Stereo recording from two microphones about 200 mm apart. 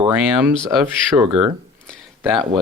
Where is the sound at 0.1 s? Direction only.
5° right (ahead or behind).